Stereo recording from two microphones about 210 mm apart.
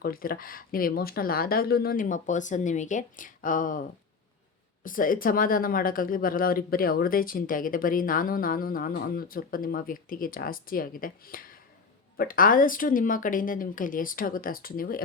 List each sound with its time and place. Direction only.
0.0 s speech: 45° left (ahead or behind)